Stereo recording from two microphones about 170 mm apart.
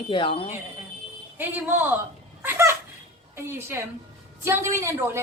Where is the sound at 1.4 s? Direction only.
10° right (ahead or behind).